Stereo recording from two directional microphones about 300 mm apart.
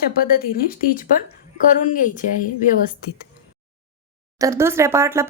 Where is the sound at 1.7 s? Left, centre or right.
Left.